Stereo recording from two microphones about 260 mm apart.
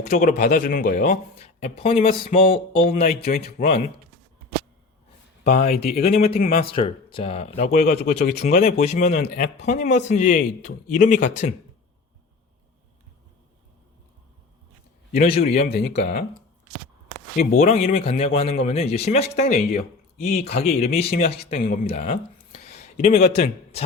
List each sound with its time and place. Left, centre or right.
0.0 s speech: left
5.4 s a man's voice: left
6.7 s a man's voice: left
8.4 s a man's voice: left
15.1 s a man's voice: left
17.3 s a man's voice: left
19.5 s speech: left
21.2 s speech: left